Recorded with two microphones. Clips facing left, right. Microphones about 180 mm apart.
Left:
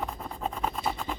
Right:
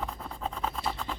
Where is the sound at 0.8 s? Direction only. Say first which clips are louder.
Left 2 dB; 10° left (ahead or behind).